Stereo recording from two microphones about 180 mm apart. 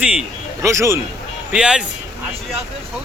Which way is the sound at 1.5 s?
5° right (ahead or behind).